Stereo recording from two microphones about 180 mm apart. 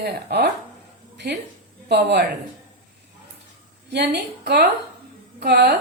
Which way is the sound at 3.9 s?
70° right (ahead or behind).